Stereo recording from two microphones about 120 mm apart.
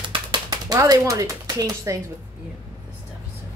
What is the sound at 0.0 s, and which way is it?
Typing, 40° right (ahead or behind).